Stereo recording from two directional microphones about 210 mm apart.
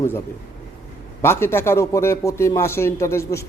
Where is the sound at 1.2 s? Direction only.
10° left (ahead or behind).